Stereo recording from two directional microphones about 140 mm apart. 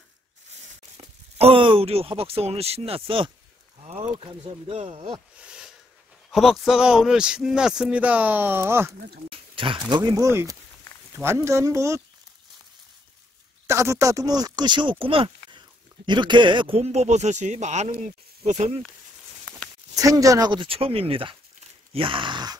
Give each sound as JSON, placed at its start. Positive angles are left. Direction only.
{"t": 0.9, "sound": "speech", "side_deg": -45}
{"t": 5.4, "sound": "a sound", "side_deg": -5}
{"t": 6.3, "sound": "speech", "side_deg": 0}
{"t": 9.3, "sound": "speech", "side_deg": -40}
{"t": 13.7, "sound": "speech", "side_deg": -20}
{"t": 20.0, "sound": "speech", "side_deg": -25}
{"t": 21.9, "sound": "a sound", "side_deg": -40}